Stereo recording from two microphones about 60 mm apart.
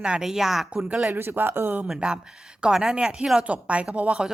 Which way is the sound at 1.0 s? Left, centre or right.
Right.